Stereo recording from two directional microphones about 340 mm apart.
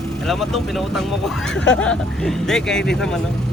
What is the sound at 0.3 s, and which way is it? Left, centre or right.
Speech, centre.